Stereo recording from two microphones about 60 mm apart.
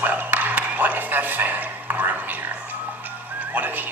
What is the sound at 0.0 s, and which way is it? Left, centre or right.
Dog, right.